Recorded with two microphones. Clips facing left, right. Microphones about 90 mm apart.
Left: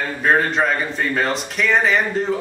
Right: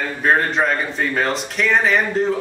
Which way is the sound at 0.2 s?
Centre (ahead or behind).